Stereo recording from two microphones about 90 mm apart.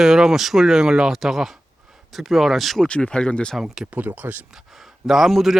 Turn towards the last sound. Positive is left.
turn(degrees=0)  # may be behind; listen again after turning